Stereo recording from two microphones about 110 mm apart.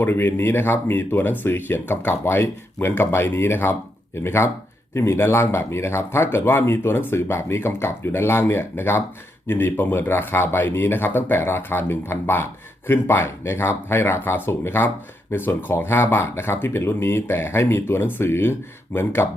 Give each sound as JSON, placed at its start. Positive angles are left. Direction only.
{"t": 0.0, "sound": "speech", "side_deg": 20}